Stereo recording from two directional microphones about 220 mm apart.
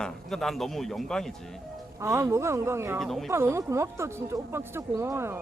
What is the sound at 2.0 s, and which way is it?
Speech, 10° right (ahead or behind).